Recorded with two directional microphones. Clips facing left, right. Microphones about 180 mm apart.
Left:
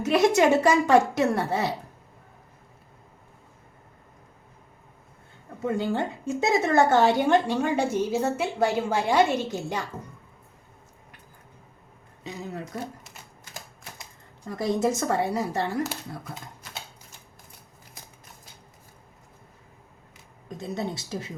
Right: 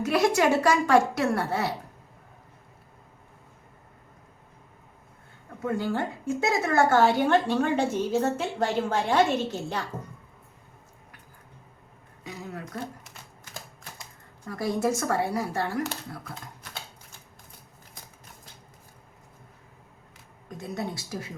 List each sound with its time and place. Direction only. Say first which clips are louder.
0.0 s a child's voice: left 3 dB; 20° left (ahead or behind)
5.6 s a woman's voice: left 2 dB; 20° left (ahead or behind)
12.2 s a sound: left 3 dB; 25° left (ahead or behind)
14.4 s a child's voice: left 2 dB; 20° left (ahead or behind)
20.6 s a child's voice: left 2 dB; 25° left (ahead or behind)